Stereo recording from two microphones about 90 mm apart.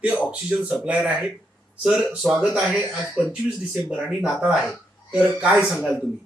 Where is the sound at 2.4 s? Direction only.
10° right (ahead or behind).